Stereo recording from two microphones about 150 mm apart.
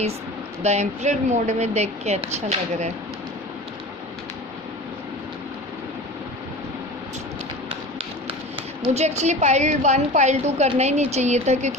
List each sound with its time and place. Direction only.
0.6 s a woman's voice: 50° right (ahead or behind)
8.3 s a woman's voice: 40° right (ahead or behind)